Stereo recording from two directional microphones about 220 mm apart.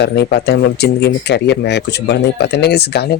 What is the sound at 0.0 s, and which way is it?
Speech, 50° left (ahead or behind).